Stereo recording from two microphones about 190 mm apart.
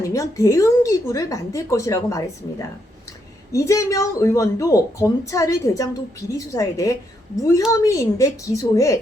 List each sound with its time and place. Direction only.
0.0 s speech: 15° left (ahead or behind)